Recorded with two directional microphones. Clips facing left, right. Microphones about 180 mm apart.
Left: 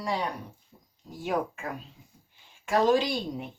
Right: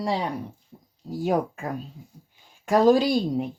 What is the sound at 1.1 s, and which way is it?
Speech, 35° right (ahead or behind).